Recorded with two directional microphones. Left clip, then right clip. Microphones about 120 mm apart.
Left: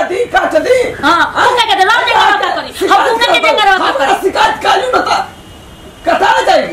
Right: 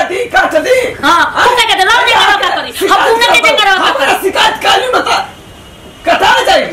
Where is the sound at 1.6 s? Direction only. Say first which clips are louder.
Right 1 dB; 5° right (ahead or behind).